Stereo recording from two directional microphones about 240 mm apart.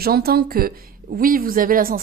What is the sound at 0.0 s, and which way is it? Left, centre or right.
Speech, right.